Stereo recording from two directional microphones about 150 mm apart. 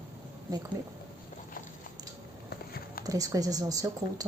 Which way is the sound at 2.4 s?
90° left.